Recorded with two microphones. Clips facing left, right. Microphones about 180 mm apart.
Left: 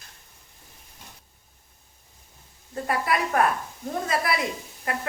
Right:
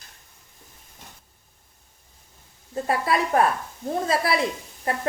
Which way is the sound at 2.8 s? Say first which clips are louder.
Right 2 dB; 25° right (ahead or behind).